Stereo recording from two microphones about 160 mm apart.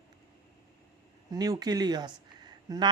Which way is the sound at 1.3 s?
25° right (ahead or behind).